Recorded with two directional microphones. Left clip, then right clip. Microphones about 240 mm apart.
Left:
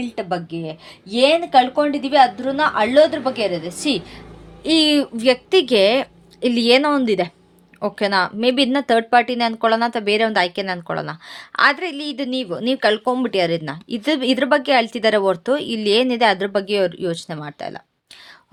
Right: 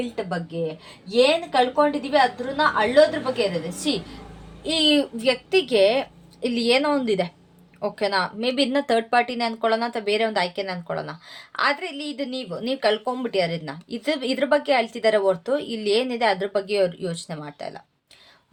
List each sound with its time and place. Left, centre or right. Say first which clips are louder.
0.2 s speech: left 5 dB; left